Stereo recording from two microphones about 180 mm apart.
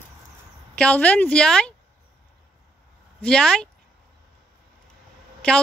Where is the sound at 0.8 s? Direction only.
10° left (ahead or behind).